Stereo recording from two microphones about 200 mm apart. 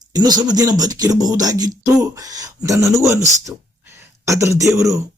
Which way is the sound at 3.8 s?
15° right (ahead or behind).